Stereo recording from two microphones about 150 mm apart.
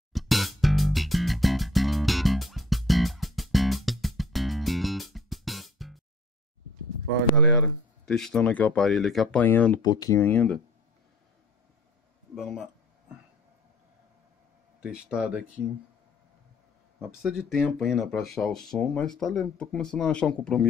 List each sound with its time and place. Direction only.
0.1 s music: centre (ahead or behind)
8.1 s speech: 5° left (ahead or behind)
9.8 s speech: 25° left (ahead or behind)
10.2 s speech: 10° left (ahead or behind)
12.4 s speech: 5° right (ahead or behind)
14.8 s speech: 5° right (ahead or behind)
17.2 s speech: 5° right (ahead or behind)